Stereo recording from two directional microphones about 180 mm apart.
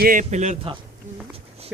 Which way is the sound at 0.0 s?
45° right (ahead or behind).